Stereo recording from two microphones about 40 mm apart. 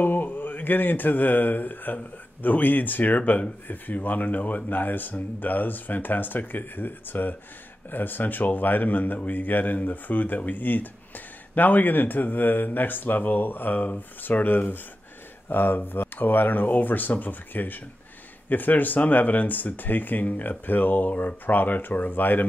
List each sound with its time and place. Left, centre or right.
0.0 s a man's voice: left
21.1 s speech: left
21.5 s a man's voice: left